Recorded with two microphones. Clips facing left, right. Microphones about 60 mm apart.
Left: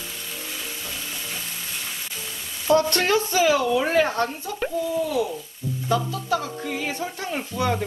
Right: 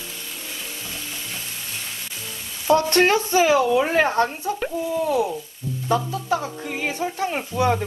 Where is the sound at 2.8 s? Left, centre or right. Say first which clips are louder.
Right 4 dB; right.